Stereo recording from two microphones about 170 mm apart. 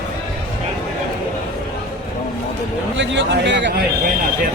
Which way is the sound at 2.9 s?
90° right.